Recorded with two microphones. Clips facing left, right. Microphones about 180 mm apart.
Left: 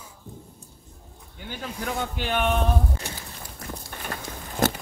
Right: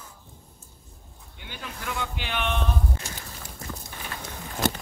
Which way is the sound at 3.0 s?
60° left (ahead or behind).